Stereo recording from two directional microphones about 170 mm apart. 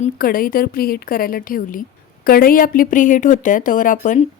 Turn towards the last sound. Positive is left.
turn(degrees=50)  # may be behind; listen again after turning